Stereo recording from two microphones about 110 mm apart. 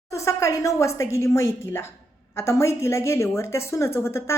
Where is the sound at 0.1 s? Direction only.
30° left (ahead or behind).